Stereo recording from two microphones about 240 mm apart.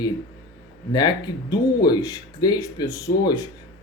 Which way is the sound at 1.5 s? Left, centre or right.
Centre.